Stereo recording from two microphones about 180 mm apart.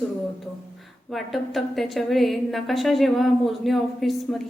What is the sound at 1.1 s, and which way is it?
A woman's voice, centre (ahead or behind).